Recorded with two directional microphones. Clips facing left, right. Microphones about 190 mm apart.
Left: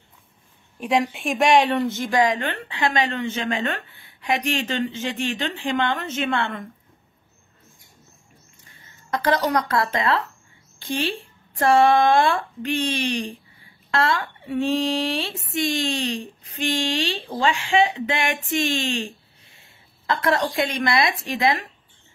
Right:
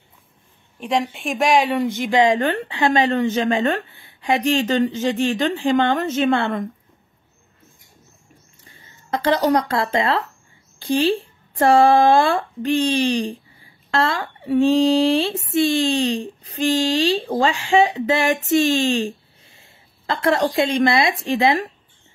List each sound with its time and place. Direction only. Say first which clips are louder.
0.7 s a woman's voice: even; centre (ahead or behind)
1.8 s speech: right 3 dB; 15° right (ahead or behind); by 6.6 s 35° right (ahead or behind)
8.6 s a woman's voice: right 2 dB; 25° right (ahead or behind)